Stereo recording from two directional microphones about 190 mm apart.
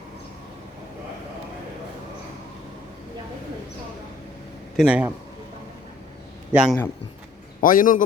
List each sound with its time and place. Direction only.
4.8 s a man's voice: 5° right (ahead or behind)
6.5 s a man's voice: 5° right (ahead or behind)
7.6 s a man's voice: 45° left (ahead or behind)